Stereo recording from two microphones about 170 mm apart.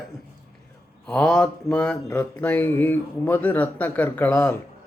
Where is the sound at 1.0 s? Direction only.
5° left (ahead or behind).